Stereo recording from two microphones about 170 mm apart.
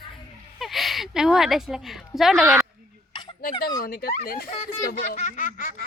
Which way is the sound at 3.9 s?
60° left (ahead or behind).